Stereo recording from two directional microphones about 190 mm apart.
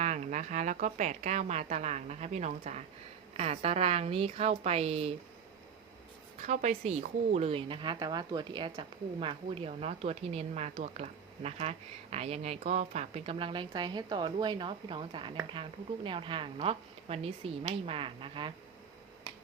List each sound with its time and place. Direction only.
0.0 s a woman's voice: 40° right (ahead or behind)
6.4 s a woman's voice: 40° right (ahead or behind)